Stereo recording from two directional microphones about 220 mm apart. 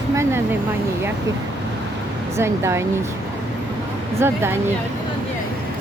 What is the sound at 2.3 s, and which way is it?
Speech, 10° right (ahead or behind).